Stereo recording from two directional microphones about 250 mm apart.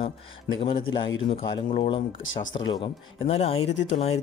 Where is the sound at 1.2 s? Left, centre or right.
Left.